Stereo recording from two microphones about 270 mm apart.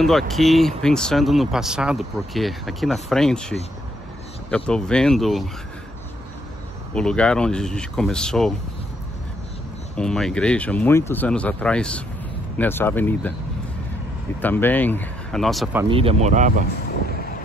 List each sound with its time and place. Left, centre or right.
0.0 s speech: centre
6.9 s speech: centre
9.9 s speech: centre
14.4 s speech: centre
15.9 s speech: right